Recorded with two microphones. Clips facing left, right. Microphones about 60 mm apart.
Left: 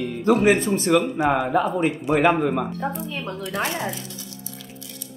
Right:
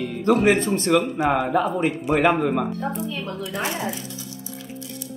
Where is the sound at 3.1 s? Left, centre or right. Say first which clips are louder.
Right 1 dB; left.